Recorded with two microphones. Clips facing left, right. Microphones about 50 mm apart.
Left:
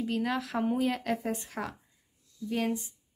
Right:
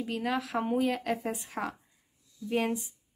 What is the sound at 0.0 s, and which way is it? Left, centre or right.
Speech, centre.